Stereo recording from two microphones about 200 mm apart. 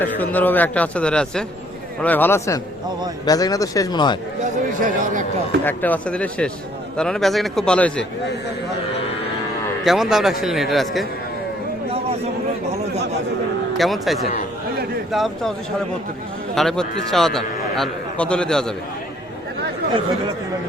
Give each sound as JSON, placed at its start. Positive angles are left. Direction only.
{"t": 0.0, "sound": "a man's voice", "side_deg": 10}
{"t": 5.6, "sound": "a man's voice", "side_deg": 10}
{"t": 9.8, "sound": "a man's voice", "side_deg": 0}
{"t": 13.7, "sound": "a man's voice", "side_deg": 0}
{"t": 16.6, "sound": "a man's voice", "side_deg": 0}